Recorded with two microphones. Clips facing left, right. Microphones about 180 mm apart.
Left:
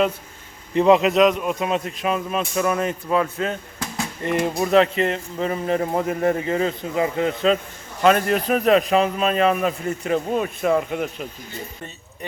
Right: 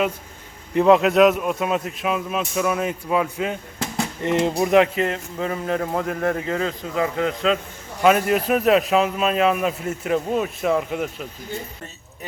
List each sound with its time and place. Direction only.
0.9 s a man's voice: centre (ahead or behind)
3.8 s a sound: 20° right (ahead or behind)
4.5 s speech: 15° right (ahead or behind)
4.9 s a man's voice: centre (ahead or behind)
5.8 s speech: 15° left (ahead or behind)
6.1 s a man's voice: 5° left (ahead or behind)